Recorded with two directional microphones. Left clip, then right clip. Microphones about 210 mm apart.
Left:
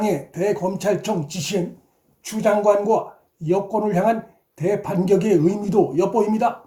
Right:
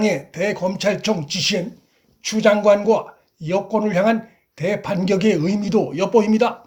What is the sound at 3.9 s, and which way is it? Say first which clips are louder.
Speech: right 1 dB; 25° right (ahead or behind).